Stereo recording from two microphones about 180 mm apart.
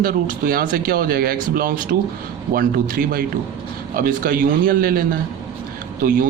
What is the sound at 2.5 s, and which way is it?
A man's voice, 55° right (ahead or behind).